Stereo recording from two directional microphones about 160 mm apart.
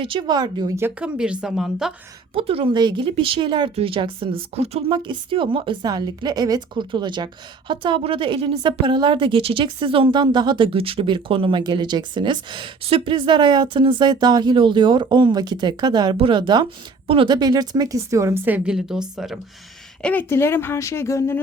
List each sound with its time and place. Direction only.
0.0 s a woman's voice: 30° right (ahead or behind)
0.8 s speech: 10° right (ahead or behind)
2.3 s a woman's voice: 35° right (ahead or behind); by 19.4 s 5° right (ahead or behind)
20.0 s speech: 10° left (ahead or behind)